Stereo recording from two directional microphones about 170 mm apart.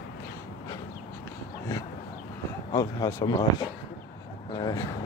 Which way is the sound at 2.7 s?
25° left (ahead or behind).